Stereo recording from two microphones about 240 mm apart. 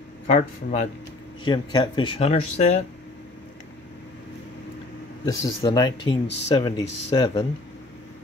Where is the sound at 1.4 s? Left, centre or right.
Centre.